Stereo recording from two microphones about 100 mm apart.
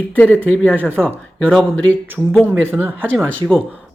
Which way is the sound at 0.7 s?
20° right (ahead or behind).